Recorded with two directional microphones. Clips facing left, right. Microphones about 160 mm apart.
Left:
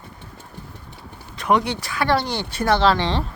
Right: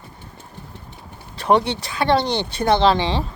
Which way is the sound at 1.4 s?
30° right (ahead or behind).